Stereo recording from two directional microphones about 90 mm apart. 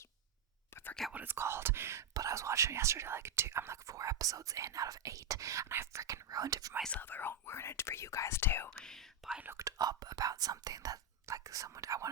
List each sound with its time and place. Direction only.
1.1 s speech: 25° right (ahead or behind); by 6.7 s 40° right (ahead or behind)
7.0 s speech: 25° left (ahead or behind)
8.8 s whispering: 5° left (ahead or behind)
9.6 s speech: 45° right (ahead or behind)